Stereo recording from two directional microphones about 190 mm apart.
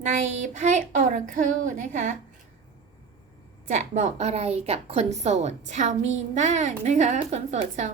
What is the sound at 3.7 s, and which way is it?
A woman's voice, 40° right (ahead or behind).